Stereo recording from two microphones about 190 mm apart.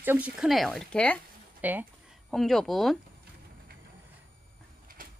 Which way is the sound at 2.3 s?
Centre (ahead or behind).